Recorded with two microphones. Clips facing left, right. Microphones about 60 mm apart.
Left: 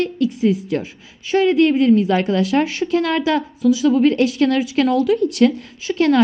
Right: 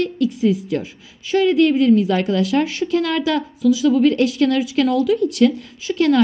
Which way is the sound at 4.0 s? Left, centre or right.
Left.